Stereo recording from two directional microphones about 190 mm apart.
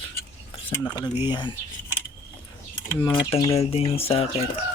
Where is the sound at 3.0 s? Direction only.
20° left (ahead or behind).